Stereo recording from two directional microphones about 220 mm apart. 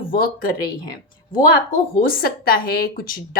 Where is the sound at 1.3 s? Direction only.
40° left (ahead or behind).